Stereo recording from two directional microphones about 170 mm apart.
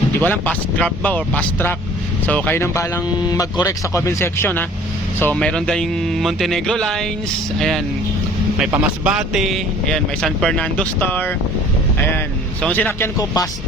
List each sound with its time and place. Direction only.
0.2 s speech: 10° left (ahead or behind)
8.7 s speech: 5° right (ahead or behind); by 11.3 s 10° left (ahead or behind)
12.6 s speech: 10° left (ahead or behind)